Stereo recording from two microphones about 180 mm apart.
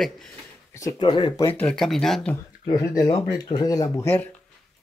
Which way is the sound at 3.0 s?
25° left (ahead or behind).